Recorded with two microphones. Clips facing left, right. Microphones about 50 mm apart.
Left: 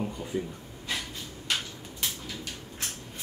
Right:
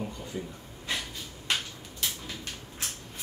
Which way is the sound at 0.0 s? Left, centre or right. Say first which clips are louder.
Left 4 dB; centre.